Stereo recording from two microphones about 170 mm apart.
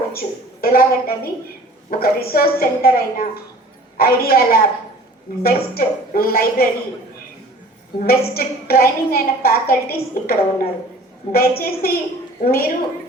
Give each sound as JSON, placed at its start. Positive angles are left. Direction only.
{"t": 0.1, "sound": "a woman's voice", "side_deg": 60}
{"t": 7.9, "sound": "a woman's voice", "side_deg": 60}